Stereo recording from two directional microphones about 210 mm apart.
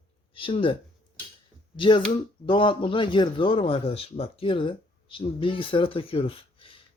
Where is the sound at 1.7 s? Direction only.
25° left (ahead or behind).